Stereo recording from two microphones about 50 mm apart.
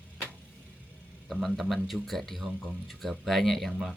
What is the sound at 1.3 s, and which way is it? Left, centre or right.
Speech, centre.